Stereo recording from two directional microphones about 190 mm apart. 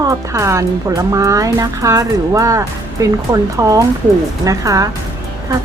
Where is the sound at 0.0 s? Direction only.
15° right (ahead or behind).